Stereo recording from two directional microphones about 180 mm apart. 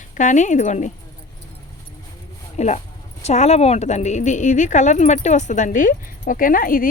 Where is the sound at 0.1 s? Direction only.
45° left (ahead or behind).